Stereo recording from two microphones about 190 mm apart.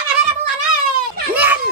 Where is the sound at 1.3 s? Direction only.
10° right (ahead or behind).